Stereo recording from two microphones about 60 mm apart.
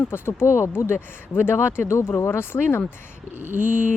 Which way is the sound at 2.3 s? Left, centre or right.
Left.